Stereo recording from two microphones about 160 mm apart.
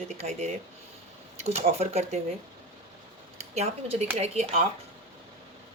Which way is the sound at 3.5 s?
45° right (ahead or behind).